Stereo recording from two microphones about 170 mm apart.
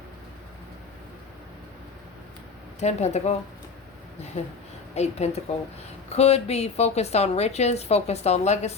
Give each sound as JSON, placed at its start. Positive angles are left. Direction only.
{"t": 2.8, "sound": "a woman's voice", "side_deg": 40}
{"t": 4.9, "sound": "a woman's voice", "side_deg": 40}